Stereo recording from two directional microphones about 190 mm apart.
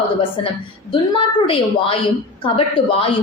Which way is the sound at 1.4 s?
30° left (ahead or behind).